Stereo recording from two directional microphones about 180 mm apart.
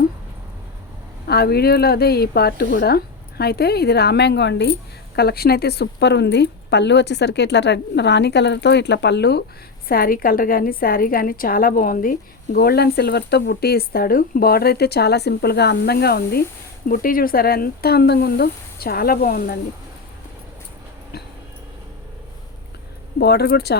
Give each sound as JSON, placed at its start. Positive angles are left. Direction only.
{"t": 1.3, "sound": "a woman's voice", "side_deg": 60}
{"t": 9.9, "sound": "a woman's voice", "side_deg": 55}
{"t": 23.2, "sound": "speech", "side_deg": 65}